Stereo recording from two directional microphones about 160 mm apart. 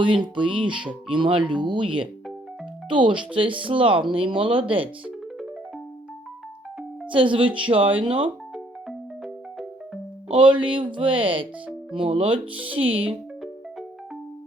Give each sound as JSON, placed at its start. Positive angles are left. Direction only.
{"t": 0.0, "sound": "speech", "side_deg": -30}
{"t": 7.1, "sound": "speech", "side_deg": -30}
{"t": 8.5, "sound": "music", "side_deg": 0}
{"t": 10.2, "sound": "speech", "side_deg": -30}
{"t": 13.0, "sound": "music", "side_deg": -10}